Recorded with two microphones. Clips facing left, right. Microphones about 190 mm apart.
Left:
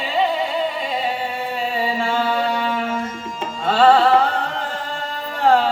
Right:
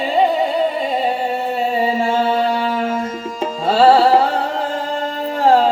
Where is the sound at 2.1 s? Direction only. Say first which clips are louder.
Right 4 dB; 40° right (ahead or behind).